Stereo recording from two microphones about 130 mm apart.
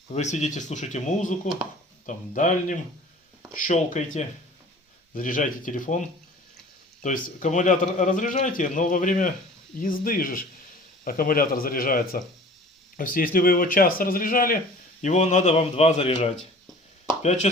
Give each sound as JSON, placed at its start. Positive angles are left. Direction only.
{"t": 0.1, "sound": "speech", "side_deg": 65}
{"t": 2.0, "sound": "a man's voice", "side_deg": 80}
{"t": 5.1, "sound": "speech", "side_deg": 90}
{"t": 7.0, "sound": "a man's voice", "side_deg": 85}
{"t": 15.0, "sound": "speech", "side_deg": 65}
{"t": 17.2, "sound": "speech", "side_deg": 65}